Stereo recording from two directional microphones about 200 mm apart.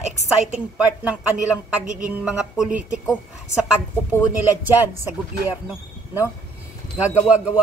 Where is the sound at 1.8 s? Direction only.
40° right (ahead or behind).